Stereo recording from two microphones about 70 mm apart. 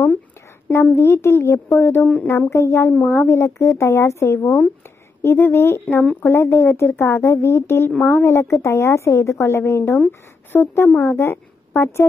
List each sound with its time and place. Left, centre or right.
0.9 s a woman's voice: left